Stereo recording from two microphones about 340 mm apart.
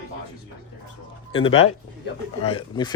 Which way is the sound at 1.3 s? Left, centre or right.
Centre.